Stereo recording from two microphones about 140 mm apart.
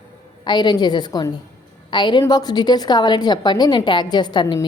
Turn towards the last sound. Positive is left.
turn(degrees=30)  # may be behind; listen again after turning